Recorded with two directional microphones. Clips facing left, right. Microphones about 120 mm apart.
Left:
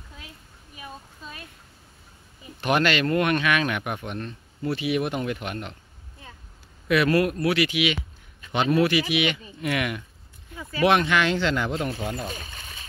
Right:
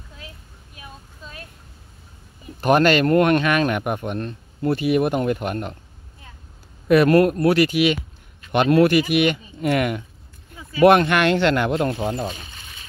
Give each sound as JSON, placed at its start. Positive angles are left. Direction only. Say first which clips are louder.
{"t": 2.6, "sound": "speech", "louder": "right 6 dB", "side_deg": -45}
{"t": 6.9, "sound": "speech", "louder": "right 6 dB", "side_deg": -45}
{"t": 8.5, "sound": "speech", "louder": "right 6 dB", "side_deg": -70}
{"t": 9.1, "sound": "speech", "louder": "right 6 dB", "side_deg": -45}
{"t": 10.8, "sound": "speech", "louder": "right 6 dB", "side_deg": -55}
{"t": 12.0, "sound": "speech", "louder": "right 6 dB", "side_deg": -35}
{"t": 12.4, "sound": "a sound", "louder": "left 1 dB", "side_deg": 40}